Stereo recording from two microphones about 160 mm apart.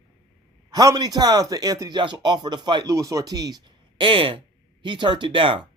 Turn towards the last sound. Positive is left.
turn(degrees=-30)  # may be behind; listen again after turning